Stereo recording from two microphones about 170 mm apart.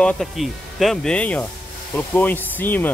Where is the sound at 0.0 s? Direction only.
Centre (ahead or behind).